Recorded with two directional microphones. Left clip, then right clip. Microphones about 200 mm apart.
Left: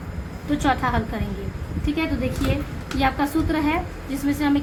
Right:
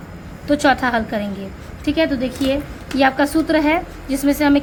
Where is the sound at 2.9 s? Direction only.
60° right (ahead or behind).